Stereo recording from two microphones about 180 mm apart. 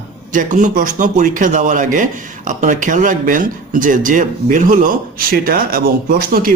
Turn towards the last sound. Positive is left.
turn(degrees=-55)  # may be behind; listen again after turning